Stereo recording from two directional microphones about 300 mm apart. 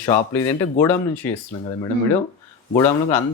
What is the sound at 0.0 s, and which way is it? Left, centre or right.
Speech, centre.